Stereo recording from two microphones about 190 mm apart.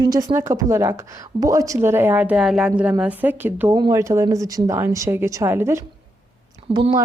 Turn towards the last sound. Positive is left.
turn(degrees=-25)  # may be behind; listen again after turning